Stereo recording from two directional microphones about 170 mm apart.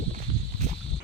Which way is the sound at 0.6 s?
45° right (ahead or behind).